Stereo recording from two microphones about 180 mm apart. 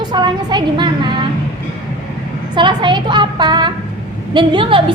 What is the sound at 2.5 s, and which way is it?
A woman's voice, 25° right (ahead or behind).